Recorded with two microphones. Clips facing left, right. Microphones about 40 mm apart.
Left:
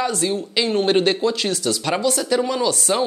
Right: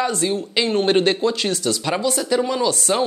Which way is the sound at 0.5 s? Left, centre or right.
Right.